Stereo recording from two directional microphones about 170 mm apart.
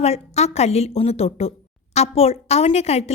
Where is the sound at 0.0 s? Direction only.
40° left (ahead or behind).